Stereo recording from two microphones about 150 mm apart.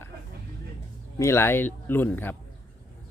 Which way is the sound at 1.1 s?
15° left (ahead or behind).